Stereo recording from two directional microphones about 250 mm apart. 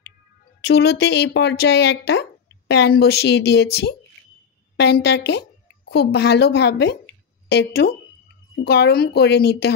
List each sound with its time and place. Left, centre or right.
0.7 s a woman's voice: left